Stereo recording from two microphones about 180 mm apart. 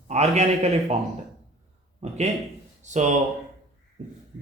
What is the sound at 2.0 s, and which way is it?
A man's voice, 35° right (ahead or behind).